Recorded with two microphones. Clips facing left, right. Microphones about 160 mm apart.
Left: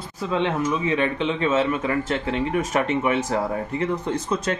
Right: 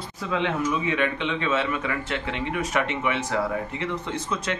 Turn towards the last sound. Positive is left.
turn(degrees=40)  # may be behind; listen again after turning